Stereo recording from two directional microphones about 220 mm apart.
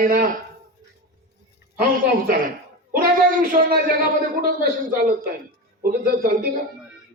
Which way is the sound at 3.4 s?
40° right (ahead or behind).